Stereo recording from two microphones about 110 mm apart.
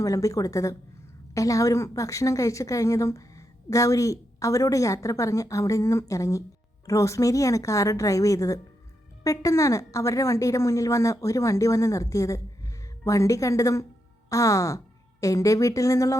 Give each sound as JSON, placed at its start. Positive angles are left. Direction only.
{"t": 0.0, "sound": "a woman's voice", "side_deg": 30}